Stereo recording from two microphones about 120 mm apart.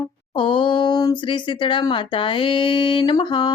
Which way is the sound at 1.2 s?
40° left (ahead or behind).